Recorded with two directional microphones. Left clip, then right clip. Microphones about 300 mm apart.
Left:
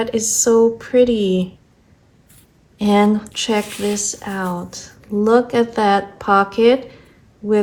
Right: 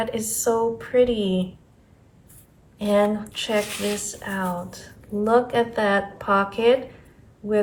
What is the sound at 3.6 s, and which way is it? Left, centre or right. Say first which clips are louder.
Speech: left 4 dB; centre.